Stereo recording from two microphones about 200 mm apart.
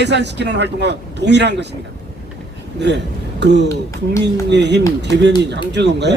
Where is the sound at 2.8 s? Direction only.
60° right (ahead or behind).